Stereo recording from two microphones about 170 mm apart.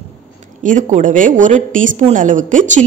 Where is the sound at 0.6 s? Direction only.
50° right (ahead or behind).